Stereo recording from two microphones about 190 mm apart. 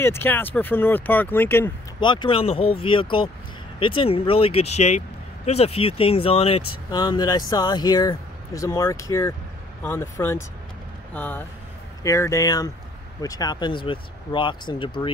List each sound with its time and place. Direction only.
0.0 s speech: 10° left (ahead or behind)
2.0 s speech: 25° left (ahead or behind)